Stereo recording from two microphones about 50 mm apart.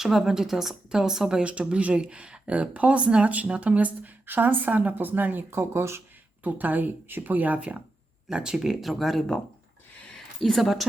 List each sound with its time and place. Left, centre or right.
0.0 s a woman's voice: centre
1.5 s speech: right
5.5 s speech: right
6.4 s speech: right
8.3 s a woman's voice: centre
8.8 s a woman's voice: centre
10.1 s a sound: centre